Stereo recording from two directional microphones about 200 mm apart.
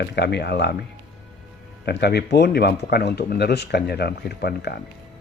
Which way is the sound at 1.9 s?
55° left (ahead or behind).